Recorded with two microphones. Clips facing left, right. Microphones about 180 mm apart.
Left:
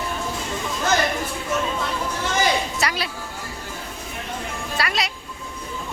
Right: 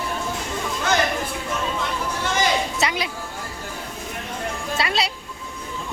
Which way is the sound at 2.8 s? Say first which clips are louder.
Right 1 dB; 20° right (ahead or behind).